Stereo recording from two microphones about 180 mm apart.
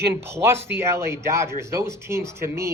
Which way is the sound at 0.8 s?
15° right (ahead or behind).